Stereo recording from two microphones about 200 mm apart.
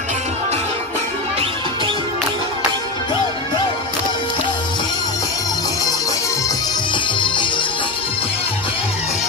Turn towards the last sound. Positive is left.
turn(degrees=25)  # may be behind; listen again after turning